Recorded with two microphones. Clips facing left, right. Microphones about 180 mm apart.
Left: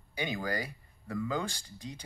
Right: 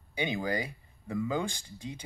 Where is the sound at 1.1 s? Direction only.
10° right (ahead or behind).